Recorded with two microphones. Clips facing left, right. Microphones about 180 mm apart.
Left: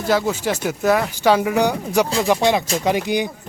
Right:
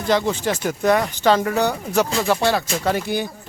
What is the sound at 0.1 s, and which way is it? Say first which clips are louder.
Speech: even; 5° left (ahead or behind).